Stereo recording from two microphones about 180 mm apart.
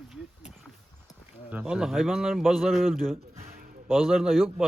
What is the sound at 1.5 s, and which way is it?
A man's voice, 5° right (ahead or behind).